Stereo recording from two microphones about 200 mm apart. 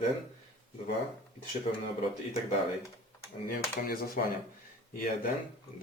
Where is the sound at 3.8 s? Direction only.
45° left (ahead or behind).